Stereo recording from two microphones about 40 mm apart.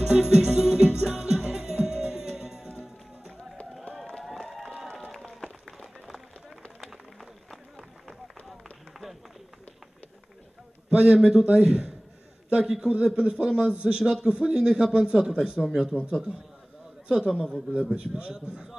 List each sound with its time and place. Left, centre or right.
0.0 s music: centre
4.2 s run: centre
5.3 s a sound: centre
6.8 s run: centre
10.9 s a sound: centre
11.1 s a man's voice: centre
17.2 s a man's voice: centre
17.9 s a man's voice: right